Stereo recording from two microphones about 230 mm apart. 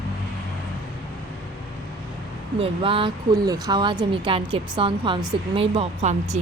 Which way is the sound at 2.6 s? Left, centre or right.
Right.